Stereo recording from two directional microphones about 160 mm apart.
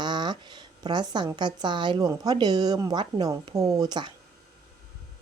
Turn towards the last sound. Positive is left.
turn(degrees=-25)  # may be behind; listen again after turning